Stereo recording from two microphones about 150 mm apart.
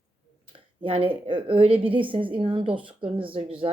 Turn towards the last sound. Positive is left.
turn(degrees=-40)  # may be behind; listen again after turning